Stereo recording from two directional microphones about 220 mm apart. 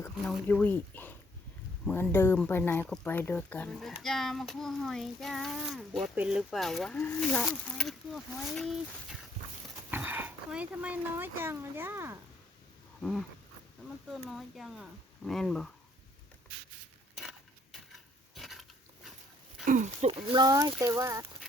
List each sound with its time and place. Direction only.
0.0 s speech: 5° left (ahead or behind); by 12.2 s 10° right (ahead or behind)
13.0 s dog: centre (ahead or behind)
14.1 s speech: centre (ahead or behind)
17.2 s a sound: centre (ahead or behind)
19.6 s speech: 35° right (ahead or behind); by 21.2 s 15° right (ahead or behind)